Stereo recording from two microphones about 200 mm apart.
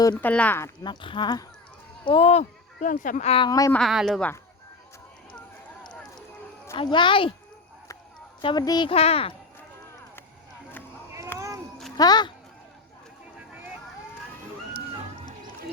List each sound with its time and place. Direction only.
0.2 s speech: 10° left (ahead or behind)
3.8 s speech: centre (ahead or behind)
5.9 s a sound: 5° left (ahead or behind)
6.7 s a woman's voice: 25° left (ahead or behind)
8.4 s a woman's voice: 20° left (ahead or behind)
11.3 s a sound: 15° right (ahead or behind)
11.9 s a woman's voice: 20° left (ahead or behind)